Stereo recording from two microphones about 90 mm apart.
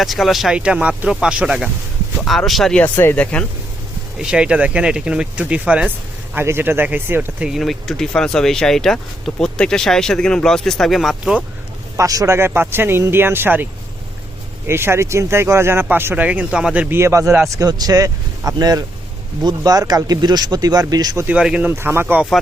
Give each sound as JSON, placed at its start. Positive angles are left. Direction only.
{"t": 0.0, "sound": "speech", "side_deg": 0}
{"t": 3.0, "sound": "speech", "side_deg": 25}
{"t": 4.2, "sound": "speech", "side_deg": -10}
{"t": 6.3, "sound": "speech", "side_deg": -25}
{"t": 7.4, "sound": "speech", "side_deg": 0}
{"t": 11.9, "sound": "speech", "side_deg": -40}
{"t": 14.7, "sound": "speech", "side_deg": -25}
{"t": 16.9, "sound": "speech", "side_deg": -30}
{"t": 17.6, "sound": "speech", "side_deg": -45}
{"t": 21.2, "sound": "speech", "side_deg": -10}
{"t": 21.7, "sound": "speech", "side_deg": -25}